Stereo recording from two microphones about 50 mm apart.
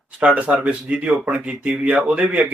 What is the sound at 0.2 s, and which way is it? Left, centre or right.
Speech, right.